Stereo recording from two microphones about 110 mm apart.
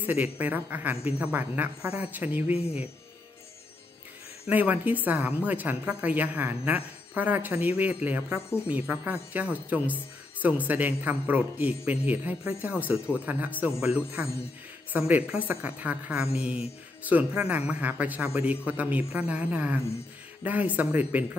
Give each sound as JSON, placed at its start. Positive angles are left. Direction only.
{"t": 0.0, "sound": "a woman's voice", "side_deg": -15}
{"t": 4.5, "sound": "a woman's voice", "side_deg": -15}